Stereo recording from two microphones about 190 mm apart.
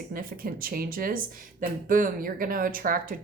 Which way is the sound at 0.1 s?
50° right (ahead or behind).